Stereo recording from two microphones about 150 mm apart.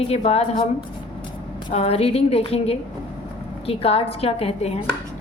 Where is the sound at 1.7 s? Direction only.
40° left (ahead or behind).